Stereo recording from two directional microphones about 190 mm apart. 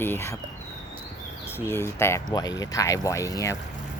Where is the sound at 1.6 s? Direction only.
15° left (ahead or behind).